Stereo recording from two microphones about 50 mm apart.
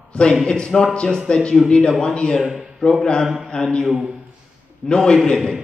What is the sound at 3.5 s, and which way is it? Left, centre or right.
Speech, centre.